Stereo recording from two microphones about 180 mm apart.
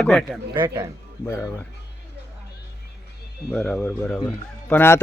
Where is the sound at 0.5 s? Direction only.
25° right (ahead or behind).